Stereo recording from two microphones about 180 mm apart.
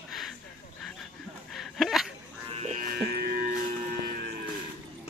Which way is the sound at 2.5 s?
35° right (ahead or behind).